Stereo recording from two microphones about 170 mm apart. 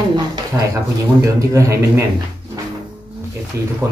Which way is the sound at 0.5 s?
15° right (ahead or behind).